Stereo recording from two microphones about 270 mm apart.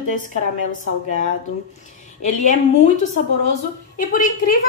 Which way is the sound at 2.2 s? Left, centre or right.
Left.